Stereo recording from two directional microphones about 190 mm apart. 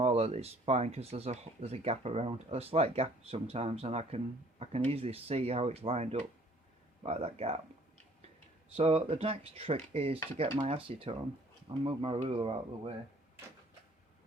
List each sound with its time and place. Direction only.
0.0 s speech: 35° right (ahead or behind)
8.7 s speech: 30° right (ahead or behind)